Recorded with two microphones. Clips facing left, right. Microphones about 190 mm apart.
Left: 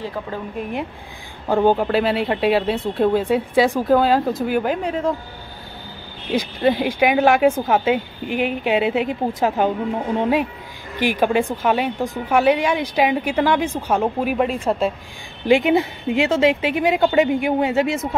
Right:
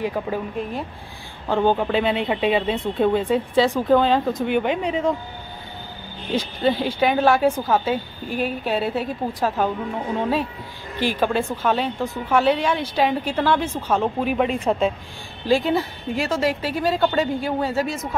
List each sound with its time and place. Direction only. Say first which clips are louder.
0.0 s speech: right 3 dB; 15° right (ahead or behind)
1.5 s speech: left 3 dB; 10° left (ahead or behind)
6.3 s speech: left 3 dB; 10° left (ahead or behind)
11.0 s speech: left 3 dB; 15° left (ahead or behind)
15.4 s a woman's voice: left 4 dB; 20° left (ahead or behind)